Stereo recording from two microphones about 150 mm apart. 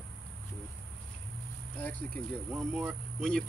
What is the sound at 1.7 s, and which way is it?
Cricket, 10° left (ahead or behind).